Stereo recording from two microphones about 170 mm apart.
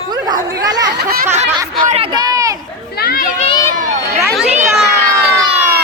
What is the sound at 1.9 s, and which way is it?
Speech, 35° right (ahead or behind).